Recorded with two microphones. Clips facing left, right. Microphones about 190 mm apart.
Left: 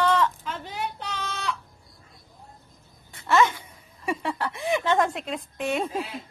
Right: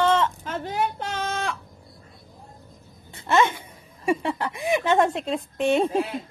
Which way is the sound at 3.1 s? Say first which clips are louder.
Even; 25° right (ahead or behind).